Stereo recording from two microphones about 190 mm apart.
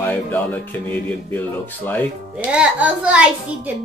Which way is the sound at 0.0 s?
10° left (ahead or behind).